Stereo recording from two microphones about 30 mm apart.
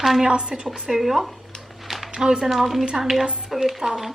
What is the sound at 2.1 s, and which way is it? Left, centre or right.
Speech, right.